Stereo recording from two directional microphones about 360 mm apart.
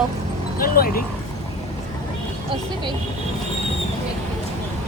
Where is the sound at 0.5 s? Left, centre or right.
Left.